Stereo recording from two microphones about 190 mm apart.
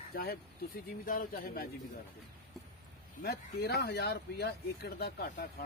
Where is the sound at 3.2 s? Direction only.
55° left (ahead or behind).